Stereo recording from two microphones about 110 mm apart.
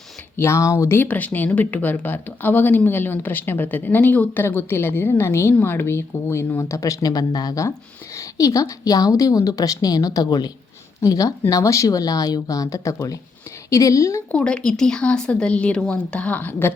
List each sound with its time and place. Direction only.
0.3 s speech: 25° left (ahead or behind)
14.3 s speech: 10° left (ahead or behind)